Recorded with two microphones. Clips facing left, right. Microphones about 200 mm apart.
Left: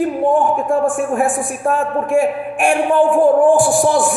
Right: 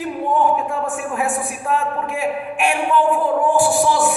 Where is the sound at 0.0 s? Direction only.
50° left (ahead or behind).